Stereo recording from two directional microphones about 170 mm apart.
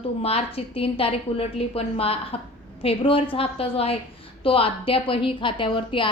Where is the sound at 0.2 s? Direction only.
35° left (ahead or behind).